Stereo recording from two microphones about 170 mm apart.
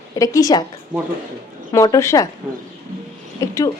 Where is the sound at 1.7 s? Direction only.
20° left (ahead or behind).